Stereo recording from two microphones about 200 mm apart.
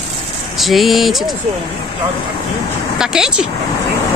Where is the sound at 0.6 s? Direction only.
Centre (ahead or behind).